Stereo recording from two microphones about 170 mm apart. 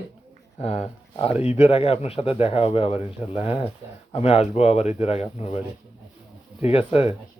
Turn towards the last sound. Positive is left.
turn(degrees=35)  # may be behind; listen again after turning